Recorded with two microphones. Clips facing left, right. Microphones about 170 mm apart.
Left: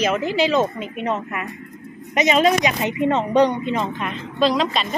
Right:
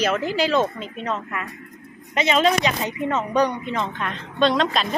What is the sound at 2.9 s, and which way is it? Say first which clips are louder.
Speech: left 5 dB; 25° left (ahead or behind).